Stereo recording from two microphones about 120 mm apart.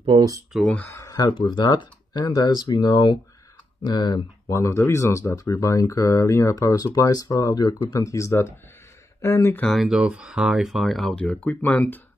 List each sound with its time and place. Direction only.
0.1 s speech: 40° right (ahead or behind)
0.5 s speech: centre (ahead or behind)
0.9 s speech: 35° left (ahead or behind); by 9.7 s 20° left (ahead or behind)
9.7 s speech: centre (ahead or behind); by 12.0 s 15° left (ahead or behind)